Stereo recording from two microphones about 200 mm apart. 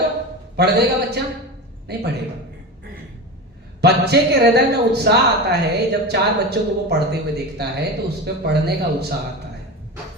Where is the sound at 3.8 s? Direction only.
55° right (ahead or behind).